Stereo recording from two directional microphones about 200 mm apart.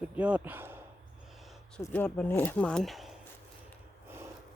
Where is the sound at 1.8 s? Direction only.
10° left (ahead or behind).